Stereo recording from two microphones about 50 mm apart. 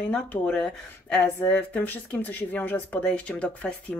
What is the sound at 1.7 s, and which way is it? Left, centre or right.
Speech, left.